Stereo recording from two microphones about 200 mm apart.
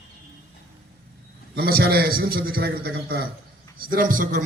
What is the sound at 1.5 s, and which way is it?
A man's voice, 50° right (ahead or behind).